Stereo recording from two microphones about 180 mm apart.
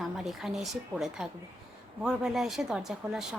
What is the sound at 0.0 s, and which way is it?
A woman's voice, centre (ahead or behind).